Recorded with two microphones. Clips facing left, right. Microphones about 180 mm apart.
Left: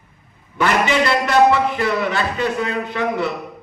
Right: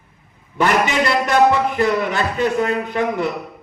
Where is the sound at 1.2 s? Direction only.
50° right (ahead or behind).